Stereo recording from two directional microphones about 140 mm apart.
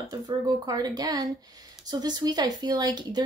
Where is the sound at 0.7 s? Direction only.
30° right (ahead or behind).